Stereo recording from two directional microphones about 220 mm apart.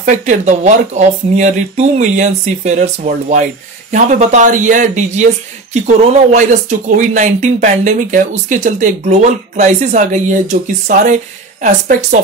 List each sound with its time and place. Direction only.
0.0 s speech: 35° right (ahead or behind)